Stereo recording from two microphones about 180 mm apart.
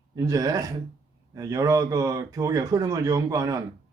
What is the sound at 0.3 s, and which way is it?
Speech, 20° right (ahead or behind).